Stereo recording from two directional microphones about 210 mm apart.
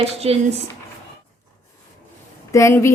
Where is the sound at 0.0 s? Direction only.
30° right (ahead or behind).